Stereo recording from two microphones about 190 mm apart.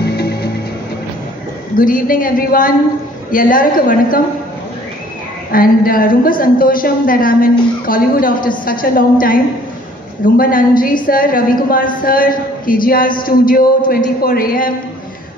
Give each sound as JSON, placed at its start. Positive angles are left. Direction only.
{"t": 0.0, "sound": "music", "side_deg": 55}
{"t": 1.8, "sound": "a man's voice", "side_deg": 45}
{"t": 5.5, "sound": "a man's voice", "side_deg": 50}